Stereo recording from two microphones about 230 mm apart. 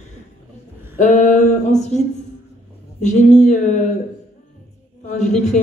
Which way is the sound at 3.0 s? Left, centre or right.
Left.